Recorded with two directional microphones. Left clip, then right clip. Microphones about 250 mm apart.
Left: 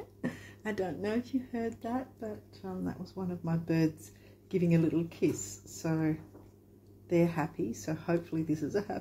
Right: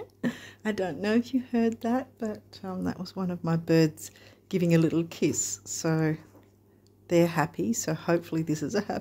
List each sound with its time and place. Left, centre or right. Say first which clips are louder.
0.2 s speech: right 6 dB; right